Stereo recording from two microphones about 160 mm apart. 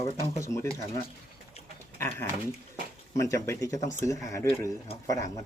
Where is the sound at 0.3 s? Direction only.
20° left (ahead or behind).